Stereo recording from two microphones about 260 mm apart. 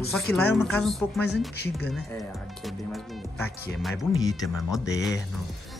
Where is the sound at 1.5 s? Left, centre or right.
Left.